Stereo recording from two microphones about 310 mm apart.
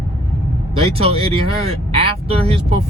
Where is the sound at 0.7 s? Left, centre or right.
Centre.